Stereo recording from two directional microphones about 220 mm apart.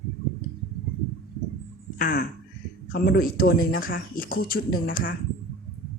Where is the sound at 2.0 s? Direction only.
45° left (ahead or behind).